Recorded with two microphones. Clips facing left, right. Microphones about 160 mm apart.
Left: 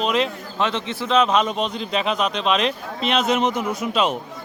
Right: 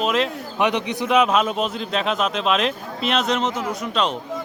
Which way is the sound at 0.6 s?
15° right (ahead or behind).